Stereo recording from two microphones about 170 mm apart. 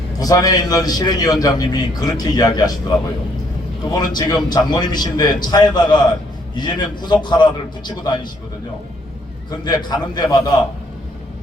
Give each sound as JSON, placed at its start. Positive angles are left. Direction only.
{"t": 0.2, "sound": "a man's voice", "side_deg": 20}
{"t": 3.9, "sound": "a man's voice", "side_deg": 25}
{"t": 9.5, "sound": "a man's voice", "side_deg": 25}